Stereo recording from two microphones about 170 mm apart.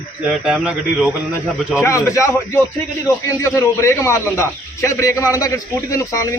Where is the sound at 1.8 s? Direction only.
20° left (ahead or behind).